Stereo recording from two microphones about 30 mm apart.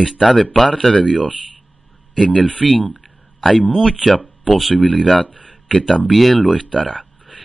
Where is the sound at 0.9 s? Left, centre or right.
Left.